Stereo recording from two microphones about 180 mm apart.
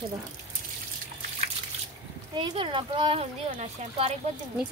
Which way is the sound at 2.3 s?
25° right (ahead or behind).